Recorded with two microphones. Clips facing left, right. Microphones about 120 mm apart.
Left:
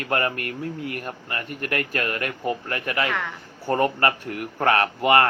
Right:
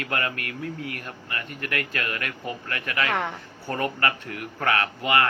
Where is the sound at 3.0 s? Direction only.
55° right (ahead or behind).